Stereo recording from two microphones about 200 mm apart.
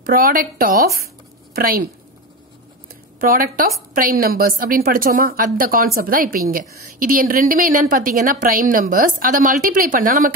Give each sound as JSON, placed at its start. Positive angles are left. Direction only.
{"t": 0.0, "sound": "a woman's voice", "side_deg": -45}
{"t": 3.2, "sound": "a woman's voice", "side_deg": -45}